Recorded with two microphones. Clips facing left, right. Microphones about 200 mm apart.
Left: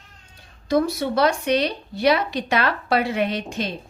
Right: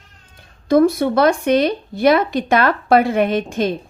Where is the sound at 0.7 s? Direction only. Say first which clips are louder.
Right 7 dB; 55° right (ahead or behind).